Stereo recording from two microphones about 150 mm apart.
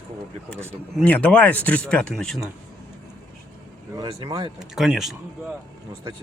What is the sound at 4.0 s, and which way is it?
Speech, 25° right (ahead or behind).